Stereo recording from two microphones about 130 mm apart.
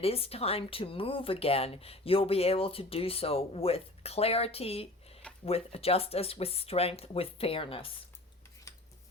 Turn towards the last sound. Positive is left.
turn(degrees=45)  # may be behind; listen again after turning